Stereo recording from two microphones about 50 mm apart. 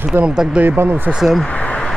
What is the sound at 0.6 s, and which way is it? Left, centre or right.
Speech, right.